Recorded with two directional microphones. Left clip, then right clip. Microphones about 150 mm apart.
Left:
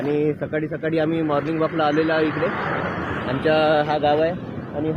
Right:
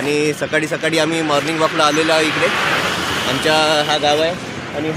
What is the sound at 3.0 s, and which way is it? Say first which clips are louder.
Speech: right 7 dB; 35° right (ahead or behind).